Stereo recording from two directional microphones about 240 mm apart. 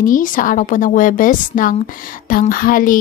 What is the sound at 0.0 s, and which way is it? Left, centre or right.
A woman's voice, left.